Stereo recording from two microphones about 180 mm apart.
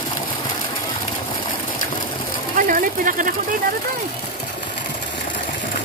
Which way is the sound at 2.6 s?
50° right (ahead or behind).